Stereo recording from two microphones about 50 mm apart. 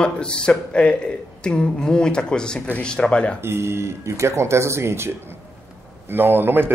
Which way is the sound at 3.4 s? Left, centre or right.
Right.